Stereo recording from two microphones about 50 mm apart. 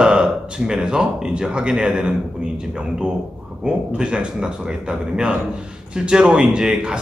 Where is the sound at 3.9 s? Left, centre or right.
Right.